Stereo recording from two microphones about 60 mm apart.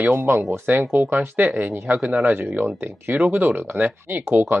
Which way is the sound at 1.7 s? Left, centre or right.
Right.